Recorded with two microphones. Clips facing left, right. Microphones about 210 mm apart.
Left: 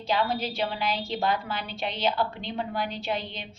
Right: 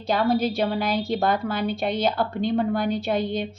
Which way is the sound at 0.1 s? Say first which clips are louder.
Right 6 dB; 45° right (ahead or behind).